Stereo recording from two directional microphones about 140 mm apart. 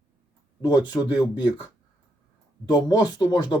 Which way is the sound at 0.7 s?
30° left (ahead or behind).